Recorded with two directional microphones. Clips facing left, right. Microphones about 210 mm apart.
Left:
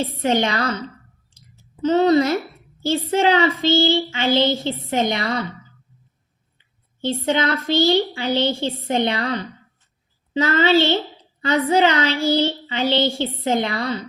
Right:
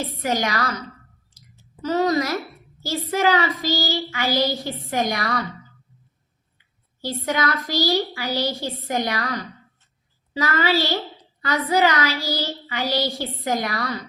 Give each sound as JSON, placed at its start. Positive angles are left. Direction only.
{"t": 0.0, "sound": "a woman's voice", "side_deg": 25}
{"t": 7.0, "sound": "a woman's voice", "side_deg": 25}